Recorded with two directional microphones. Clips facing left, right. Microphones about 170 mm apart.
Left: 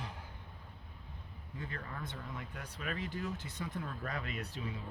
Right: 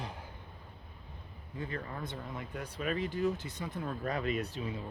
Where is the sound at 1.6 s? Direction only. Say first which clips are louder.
Right 5 dB; 20° right (ahead or behind).